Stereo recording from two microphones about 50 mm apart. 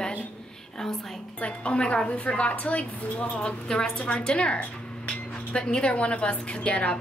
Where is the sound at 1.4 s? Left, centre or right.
Left.